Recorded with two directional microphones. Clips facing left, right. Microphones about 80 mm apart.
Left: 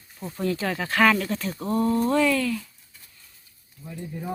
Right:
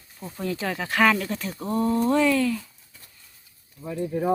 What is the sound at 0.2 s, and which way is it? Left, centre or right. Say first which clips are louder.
Speech: left 2 dB; centre.